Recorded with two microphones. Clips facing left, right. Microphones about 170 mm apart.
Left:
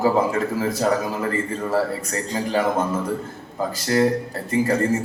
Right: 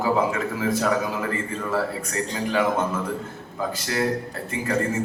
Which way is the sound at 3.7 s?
40° left (ahead or behind).